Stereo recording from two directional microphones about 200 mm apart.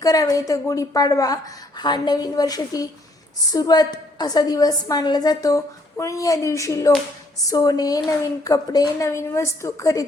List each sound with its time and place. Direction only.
0.0 s a woman's voice: 15° left (ahead or behind)